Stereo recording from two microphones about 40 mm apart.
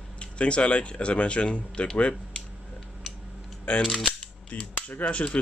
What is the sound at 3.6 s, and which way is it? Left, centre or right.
Speech, left.